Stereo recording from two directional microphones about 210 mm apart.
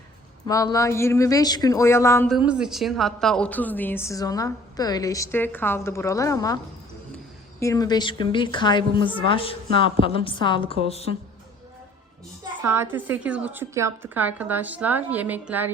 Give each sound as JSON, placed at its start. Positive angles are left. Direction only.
{"t": 0.4, "sound": "a woman's voice", "side_deg": 15}
{"t": 2.2, "sound": "a woman's voice", "side_deg": -5}
{"t": 7.6, "sound": "a woman's voice", "side_deg": 15}
{"t": 12.6, "sound": "a woman's voice", "side_deg": -10}